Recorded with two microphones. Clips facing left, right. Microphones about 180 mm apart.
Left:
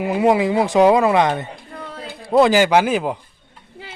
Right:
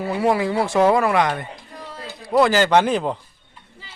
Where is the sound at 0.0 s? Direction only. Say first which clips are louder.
Left 4 dB; 15° left (ahead or behind).